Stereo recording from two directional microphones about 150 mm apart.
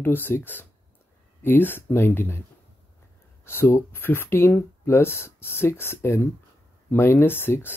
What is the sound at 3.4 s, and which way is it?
Speech, 15° left (ahead or behind).